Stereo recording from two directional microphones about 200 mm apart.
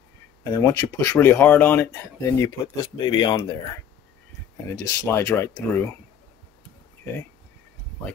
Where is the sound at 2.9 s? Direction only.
20° left (ahead or behind).